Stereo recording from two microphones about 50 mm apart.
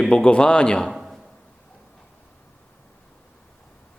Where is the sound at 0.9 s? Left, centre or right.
Centre.